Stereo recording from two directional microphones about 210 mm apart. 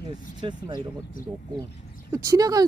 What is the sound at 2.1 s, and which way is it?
Speech, 15° right (ahead or behind).